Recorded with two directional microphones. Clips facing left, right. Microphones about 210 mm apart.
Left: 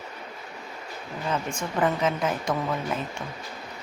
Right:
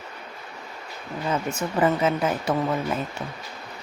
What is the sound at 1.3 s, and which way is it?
A woman's voice, 5° right (ahead or behind).